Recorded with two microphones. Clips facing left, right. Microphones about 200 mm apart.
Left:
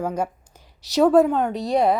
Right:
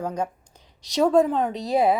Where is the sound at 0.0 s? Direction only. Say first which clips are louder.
Left 2 dB; 5° left (ahead or behind).